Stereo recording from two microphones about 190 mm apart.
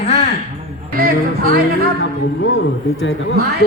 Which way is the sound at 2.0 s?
90° left.